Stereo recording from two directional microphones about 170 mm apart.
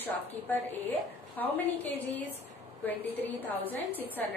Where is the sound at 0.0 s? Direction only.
10° left (ahead or behind).